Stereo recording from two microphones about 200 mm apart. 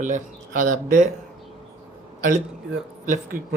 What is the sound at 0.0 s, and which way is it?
Speech, 40° right (ahead or behind).